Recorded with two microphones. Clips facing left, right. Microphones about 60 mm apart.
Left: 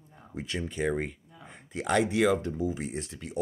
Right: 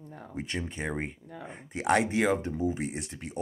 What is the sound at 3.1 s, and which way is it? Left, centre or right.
Speech, right.